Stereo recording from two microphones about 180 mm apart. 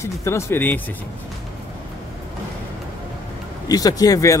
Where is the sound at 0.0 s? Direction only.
15° left (ahead or behind).